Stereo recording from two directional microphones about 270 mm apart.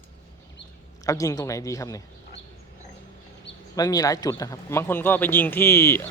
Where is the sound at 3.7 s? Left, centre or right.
Centre.